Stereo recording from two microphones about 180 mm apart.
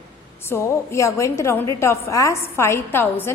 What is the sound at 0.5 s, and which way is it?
A woman's voice, 15° left (ahead or behind).